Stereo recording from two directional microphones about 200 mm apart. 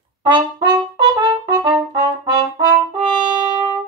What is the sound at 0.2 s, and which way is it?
Trumpet, 25° right (ahead or behind).